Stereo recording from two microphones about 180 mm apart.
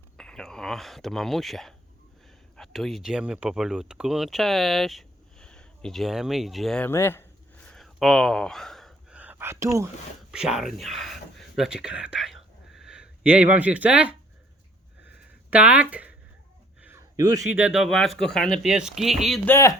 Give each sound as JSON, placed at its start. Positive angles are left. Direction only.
{"t": 0.2, "sound": "speech", "side_deg": 5}
{"t": 7.7, "sound": "gasp", "side_deg": 0}
{"t": 10.3, "sound": "speech", "side_deg": -5}
{"t": 15.5, "sound": "speech", "side_deg": -5}
{"t": 16.8, "sound": "a sound", "side_deg": -15}
{"t": 17.6, "sound": "speech", "side_deg": -5}
{"t": 19.5, "sound": "speech", "side_deg": 15}